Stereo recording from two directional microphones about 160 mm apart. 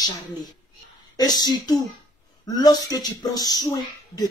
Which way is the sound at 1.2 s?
25° left (ahead or behind).